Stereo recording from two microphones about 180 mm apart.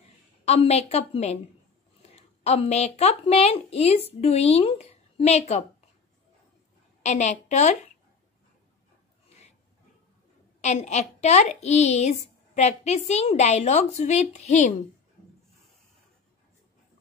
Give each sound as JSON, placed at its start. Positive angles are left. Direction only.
{"t": 0.5, "sound": "a woman's voice", "side_deg": 35}
{"t": 7.0, "sound": "a woman's voice", "side_deg": 40}
{"t": 10.6, "sound": "a woman's voice", "side_deg": 40}